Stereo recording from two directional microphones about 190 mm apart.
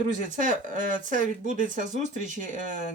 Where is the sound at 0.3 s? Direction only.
45° right (ahead or behind).